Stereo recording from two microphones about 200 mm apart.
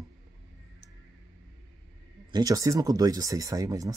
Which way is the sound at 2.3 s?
15° right (ahead or behind).